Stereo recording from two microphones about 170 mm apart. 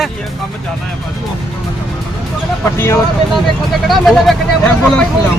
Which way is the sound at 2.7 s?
15° left (ahead or behind).